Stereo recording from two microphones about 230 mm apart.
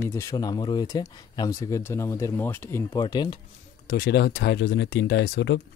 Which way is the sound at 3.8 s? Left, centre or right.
Left.